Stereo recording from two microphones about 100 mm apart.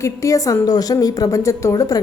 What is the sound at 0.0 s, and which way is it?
A woman's voice, 30° left (ahead or behind).